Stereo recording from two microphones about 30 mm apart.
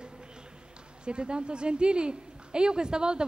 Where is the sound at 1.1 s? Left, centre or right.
Right.